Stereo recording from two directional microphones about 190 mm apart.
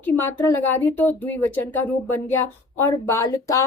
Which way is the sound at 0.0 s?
10° left (ahead or behind).